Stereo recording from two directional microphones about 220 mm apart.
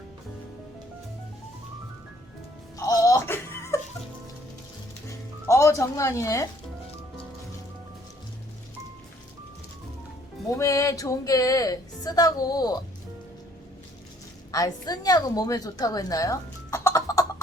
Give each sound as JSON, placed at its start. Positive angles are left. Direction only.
{"t": 2.7, "sound": "music", "side_deg": 15}
{"t": 5.5, "sound": "speech", "side_deg": 15}
{"t": 10.6, "sound": "speech", "side_deg": 15}
{"t": 14.5, "sound": "a woman's voice", "side_deg": 15}